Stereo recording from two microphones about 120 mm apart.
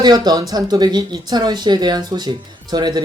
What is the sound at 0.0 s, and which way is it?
Speech, 35° right (ahead or behind).